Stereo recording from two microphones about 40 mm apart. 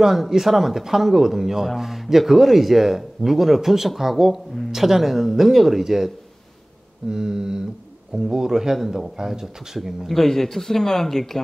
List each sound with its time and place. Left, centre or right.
0.0 s speech: centre
9.8 s speech: centre